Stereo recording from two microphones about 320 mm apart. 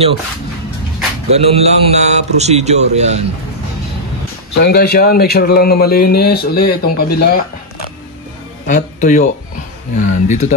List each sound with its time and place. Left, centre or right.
1.3 s a man's voice: centre
4.6 s speech: left
8.6 s speech: left